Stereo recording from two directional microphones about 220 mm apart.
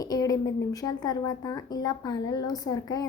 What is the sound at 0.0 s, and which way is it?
A woman's voice, 15° left (ahead or behind).